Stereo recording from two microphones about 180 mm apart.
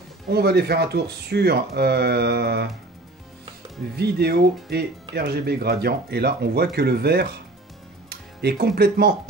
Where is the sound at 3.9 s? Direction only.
65° right (ahead or behind).